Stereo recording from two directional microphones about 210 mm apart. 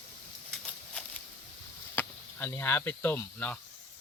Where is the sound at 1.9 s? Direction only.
10° left (ahead or behind).